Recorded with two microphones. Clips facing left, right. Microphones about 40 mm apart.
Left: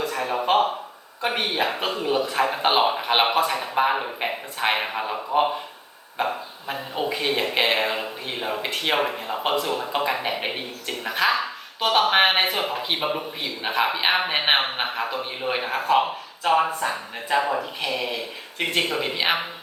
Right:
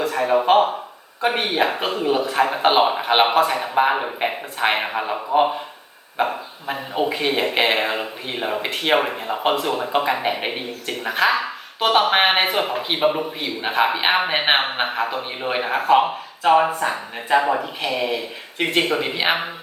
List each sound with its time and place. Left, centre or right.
0.2 s a man's voice: centre
16.5 s a man's voice: right